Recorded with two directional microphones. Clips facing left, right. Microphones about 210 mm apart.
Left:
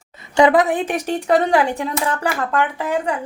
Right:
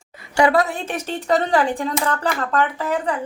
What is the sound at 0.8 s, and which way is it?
Speech, 15° left (ahead or behind).